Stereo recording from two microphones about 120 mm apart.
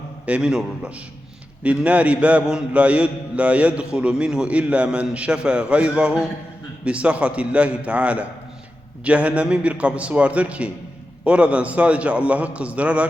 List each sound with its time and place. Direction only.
0.3 s a man's voice: 10° right (ahead or behind)